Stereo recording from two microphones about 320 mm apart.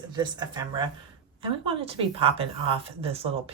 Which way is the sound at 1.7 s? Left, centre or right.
Centre.